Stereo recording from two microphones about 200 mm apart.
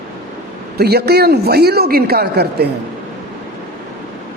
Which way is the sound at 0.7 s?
55° right (ahead or behind).